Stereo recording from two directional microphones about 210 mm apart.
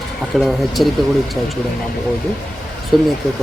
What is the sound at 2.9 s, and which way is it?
Speech, centre (ahead or behind).